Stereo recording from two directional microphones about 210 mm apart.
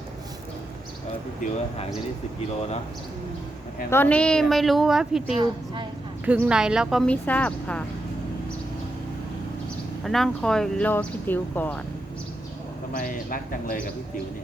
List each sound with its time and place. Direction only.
3.8 s speech: 10° left (ahead or behind)
5.3 s a woman's voice: 20° right (ahead or behind)
6.2 s speech: 10° right (ahead or behind)
10.0 s speech: centre (ahead or behind)
12.9 s speech: 40° left (ahead or behind)